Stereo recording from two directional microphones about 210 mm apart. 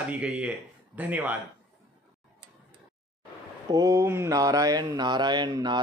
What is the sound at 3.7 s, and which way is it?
Mantra, 15° right (ahead or behind).